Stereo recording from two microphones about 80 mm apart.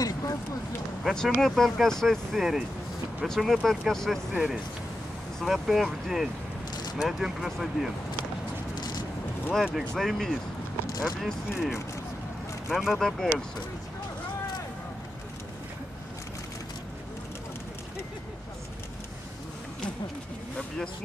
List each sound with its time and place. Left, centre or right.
0.0 s a sound: left
1.0 s speech: centre
4.3 s speech: centre
8.7 s vehicle: left
9.5 s speech: centre